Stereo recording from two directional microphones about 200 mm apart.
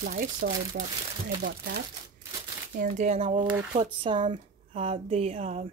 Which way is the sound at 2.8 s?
35° right (ahead or behind).